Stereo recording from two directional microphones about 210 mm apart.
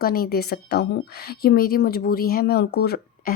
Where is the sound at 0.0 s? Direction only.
45° left (ahead or behind).